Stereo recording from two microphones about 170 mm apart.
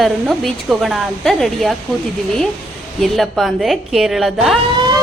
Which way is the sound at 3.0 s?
Centre (ahead or behind).